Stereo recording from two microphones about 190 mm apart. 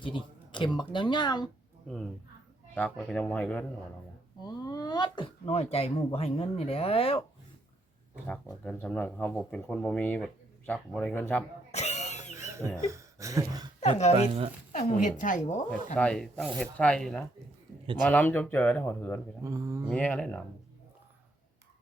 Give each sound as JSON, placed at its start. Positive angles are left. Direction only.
{"t": 0.0, "sound": "speech", "side_deg": 25}
{"t": 2.7, "sound": "speech", "side_deg": 5}
{"t": 4.4, "sound": "speech", "side_deg": 20}
{"t": 8.6, "sound": "speech", "side_deg": 5}
{"t": 11.7, "sound": "a sound", "side_deg": 35}
{"t": 12.7, "sound": "a sound", "side_deg": -15}
{"t": 13.8, "sound": "speech", "side_deg": 35}
{"t": 14.2, "sound": "speech", "side_deg": -30}
{"t": 14.7, "sound": "speech", "side_deg": 40}
{"t": 16.0, "sound": "speech", "side_deg": 5}
{"t": 19.4, "sound": "speech", "side_deg": -15}
{"t": 19.9, "sound": "speech", "side_deg": 5}